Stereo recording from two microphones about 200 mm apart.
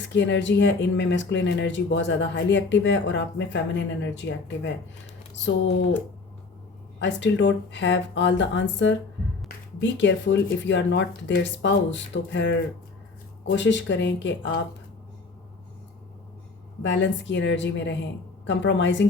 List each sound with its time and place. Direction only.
0.0 s speech: 65° left (ahead or behind)
7.0 s speech: 65° left (ahead or behind)
16.8 s speech: 65° left (ahead or behind)